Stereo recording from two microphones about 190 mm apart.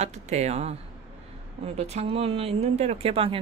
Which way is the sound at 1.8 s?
35° right (ahead or behind).